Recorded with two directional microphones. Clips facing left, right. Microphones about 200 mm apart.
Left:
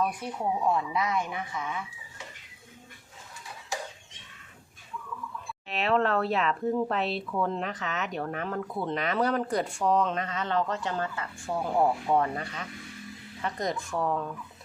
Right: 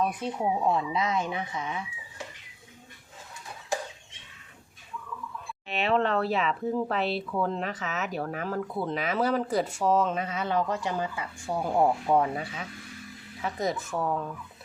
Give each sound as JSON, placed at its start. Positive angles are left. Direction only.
{"t": 0.0, "sound": "speech", "side_deg": -25}
{"t": 5.6, "sound": "speech", "side_deg": 0}